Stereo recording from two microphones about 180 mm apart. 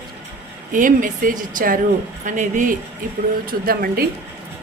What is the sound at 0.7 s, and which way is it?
A woman's voice, 50° right (ahead or behind).